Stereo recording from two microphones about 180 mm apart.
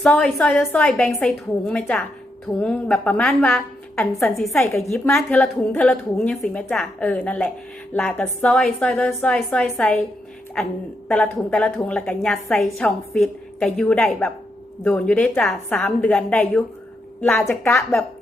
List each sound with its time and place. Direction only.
0.0 s a woman's voice: 5° left (ahead or behind)
11.1 s a woman's voice: 5° left (ahead or behind)